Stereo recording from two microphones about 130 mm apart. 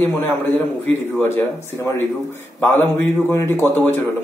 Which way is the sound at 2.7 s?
15° left (ahead or behind).